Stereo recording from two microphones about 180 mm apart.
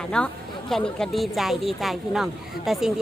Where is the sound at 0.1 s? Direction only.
5° left (ahead or behind).